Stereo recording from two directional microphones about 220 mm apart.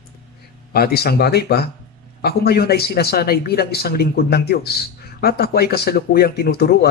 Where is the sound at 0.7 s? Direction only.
45° left (ahead or behind).